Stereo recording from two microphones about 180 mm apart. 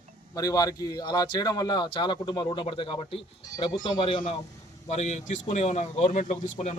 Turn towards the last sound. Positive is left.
turn(degrees=40)  # may be behind; listen again after turning